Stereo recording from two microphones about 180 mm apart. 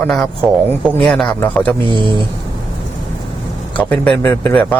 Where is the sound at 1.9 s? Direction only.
25° right (ahead or behind).